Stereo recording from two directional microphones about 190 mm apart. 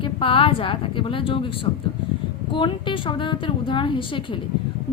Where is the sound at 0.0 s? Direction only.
25° left (ahead or behind).